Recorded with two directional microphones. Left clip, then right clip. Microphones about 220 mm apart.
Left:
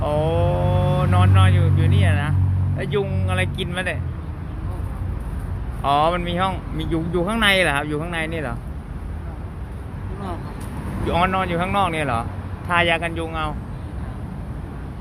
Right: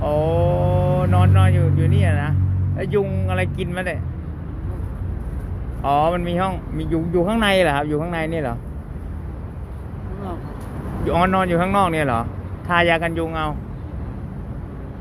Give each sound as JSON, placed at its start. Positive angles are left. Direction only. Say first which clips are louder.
{"t": 0.0, "sound": "vehicle", "louder": "right 2 dB", "side_deg": -5}
{"t": 2.7, "sound": "speech", "louder": "right 3 dB", "side_deg": -10}
{"t": 5.8, "sound": "speech", "louder": "even", "side_deg": 0}
{"t": 11.0, "sound": "speech", "louder": "right 2 dB", "side_deg": -10}